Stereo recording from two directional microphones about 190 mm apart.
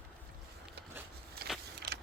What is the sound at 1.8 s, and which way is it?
Mechanisms, 55° right (ahead or behind).